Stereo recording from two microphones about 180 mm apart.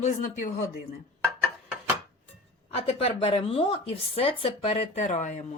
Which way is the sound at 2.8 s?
35° left (ahead or behind).